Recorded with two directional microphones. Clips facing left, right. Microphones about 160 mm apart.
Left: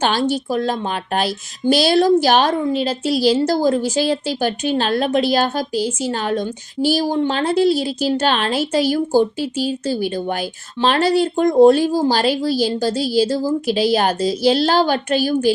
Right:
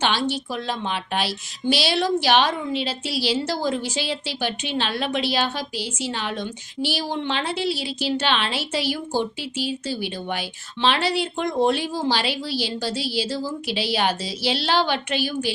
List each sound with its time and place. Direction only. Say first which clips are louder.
0.0 s a woman's voice: left 5 dB; 45° left (ahead or behind)